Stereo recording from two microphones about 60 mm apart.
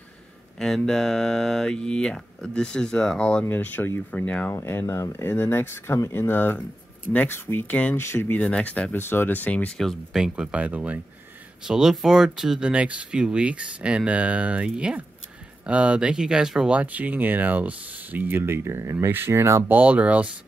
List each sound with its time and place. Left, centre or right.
0.6 s speech: centre
3.4 s speech: left
4.1 s speech: left
4.6 s speech: left
7.9 s speech: left
8.4 s speech: left
8.9 s speech: left
10.1 s speech: centre
11.6 s speech: centre
16.7 s speech: right
19.1 s speech: right
19.7 s speech: right